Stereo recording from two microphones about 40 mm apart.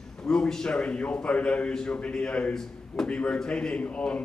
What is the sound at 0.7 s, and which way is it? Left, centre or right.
Speech, left.